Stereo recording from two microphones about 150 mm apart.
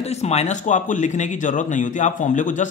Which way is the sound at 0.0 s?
45° left (ahead or behind).